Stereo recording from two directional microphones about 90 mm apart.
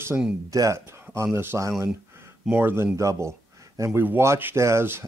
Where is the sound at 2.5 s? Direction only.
20° right (ahead or behind).